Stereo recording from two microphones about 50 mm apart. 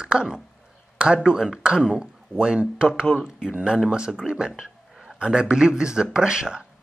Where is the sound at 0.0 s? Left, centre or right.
Centre.